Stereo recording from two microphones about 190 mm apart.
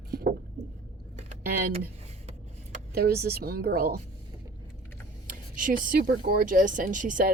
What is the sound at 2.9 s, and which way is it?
Speech, 55° right (ahead or behind).